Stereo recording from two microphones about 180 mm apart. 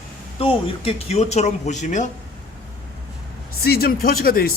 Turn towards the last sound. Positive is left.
turn(degrees=55)  # may be behind; listen again after turning